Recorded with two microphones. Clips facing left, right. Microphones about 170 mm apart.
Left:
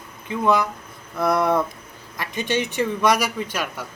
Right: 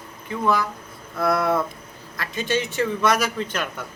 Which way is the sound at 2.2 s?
15° left (ahead or behind).